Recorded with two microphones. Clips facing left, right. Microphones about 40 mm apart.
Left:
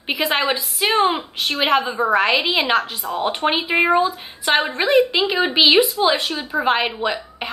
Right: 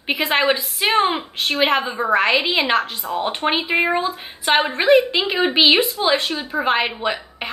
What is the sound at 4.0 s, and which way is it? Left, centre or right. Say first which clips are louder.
A woman's voice: left 4 dB; centre.